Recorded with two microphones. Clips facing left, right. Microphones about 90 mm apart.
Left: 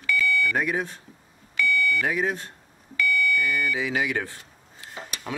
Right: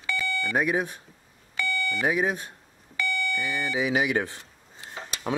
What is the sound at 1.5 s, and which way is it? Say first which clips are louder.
Doorbell: left 5 dB; 30° right (ahead or behind).